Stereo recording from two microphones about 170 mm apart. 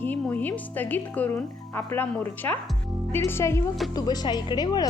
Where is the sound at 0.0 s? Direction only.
10° left (ahead or behind).